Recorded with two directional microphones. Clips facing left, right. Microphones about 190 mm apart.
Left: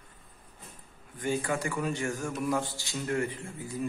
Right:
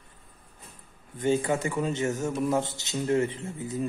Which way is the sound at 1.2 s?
25° right (ahead or behind).